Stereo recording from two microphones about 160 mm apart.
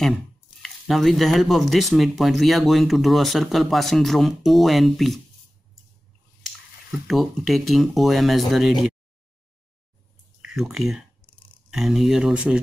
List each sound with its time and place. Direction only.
0.6 s speech: centre (ahead or behind)
7.1 s speech: centre (ahead or behind)
10.4 s speech: centre (ahead or behind)